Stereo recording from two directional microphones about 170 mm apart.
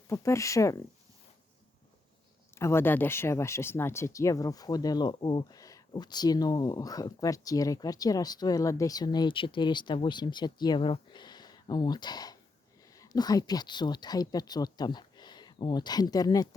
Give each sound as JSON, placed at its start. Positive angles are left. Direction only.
{"t": 0.1, "sound": "speech", "side_deg": 15}
{"t": 2.6, "sound": "speech", "side_deg": 15}